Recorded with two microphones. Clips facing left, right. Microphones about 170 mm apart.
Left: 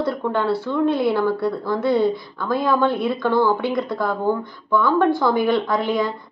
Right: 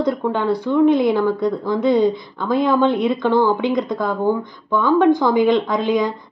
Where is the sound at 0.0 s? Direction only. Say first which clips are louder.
Right 2 dB; 15° right (ahead or behind).